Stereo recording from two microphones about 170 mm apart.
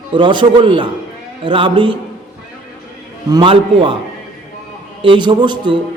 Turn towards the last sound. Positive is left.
turn(degrees=-30)  # may be behind; listen again after turning